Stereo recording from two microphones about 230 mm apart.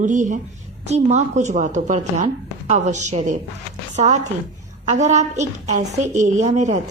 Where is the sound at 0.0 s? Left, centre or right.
Right.